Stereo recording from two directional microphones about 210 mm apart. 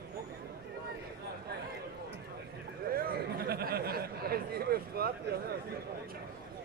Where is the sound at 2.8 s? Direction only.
45° right (ahead or behind).